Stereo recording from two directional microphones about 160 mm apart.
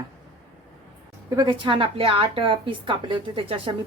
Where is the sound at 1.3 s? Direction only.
25° right (ahead or behind).